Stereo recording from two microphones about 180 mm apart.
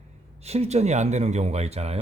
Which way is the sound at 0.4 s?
35° right (ahead or behind).